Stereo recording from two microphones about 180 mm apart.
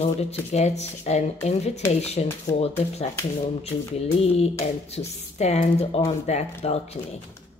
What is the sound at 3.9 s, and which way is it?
A woman's voice, 35° left (ahead or behind).